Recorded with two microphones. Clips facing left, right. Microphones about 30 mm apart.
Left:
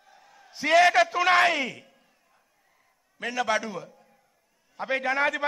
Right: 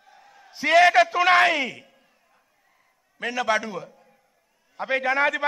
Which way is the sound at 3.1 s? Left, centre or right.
Centre.